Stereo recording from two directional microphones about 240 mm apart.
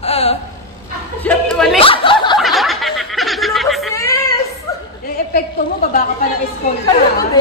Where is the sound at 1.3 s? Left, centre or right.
Centre.